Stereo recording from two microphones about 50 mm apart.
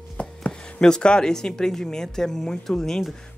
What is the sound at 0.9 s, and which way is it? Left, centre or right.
Speech, centre.